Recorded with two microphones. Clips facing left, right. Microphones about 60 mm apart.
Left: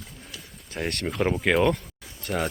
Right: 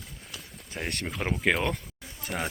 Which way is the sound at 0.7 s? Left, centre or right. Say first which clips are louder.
Left 4 dB; centre.